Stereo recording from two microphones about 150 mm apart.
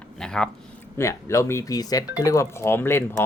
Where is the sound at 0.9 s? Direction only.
20° left (ahead or behind).